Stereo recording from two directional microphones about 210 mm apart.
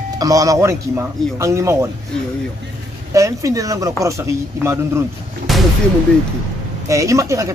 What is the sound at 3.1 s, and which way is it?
A woman's voice, 15° right (ahead or behind).